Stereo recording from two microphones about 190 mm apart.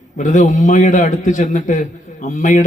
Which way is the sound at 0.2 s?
40° left (ahead or behind).